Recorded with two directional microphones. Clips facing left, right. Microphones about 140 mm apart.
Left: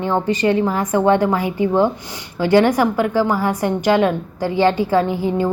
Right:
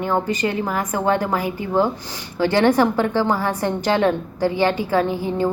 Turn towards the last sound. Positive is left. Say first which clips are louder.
# left 3 dB
turn(degrees=20)  # may be behind; listen again after turning